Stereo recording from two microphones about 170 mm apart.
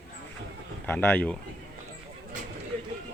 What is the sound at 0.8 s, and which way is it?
Speech, 10° left (ahead or behind).